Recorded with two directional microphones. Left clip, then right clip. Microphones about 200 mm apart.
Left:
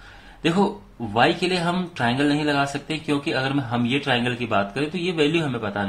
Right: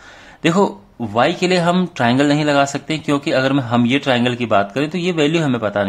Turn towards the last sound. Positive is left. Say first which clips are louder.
# right 7 dB
turn(degrees=-40)  # may be behind; listen again after turning